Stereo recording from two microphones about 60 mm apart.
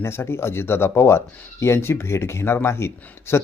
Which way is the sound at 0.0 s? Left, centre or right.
Left.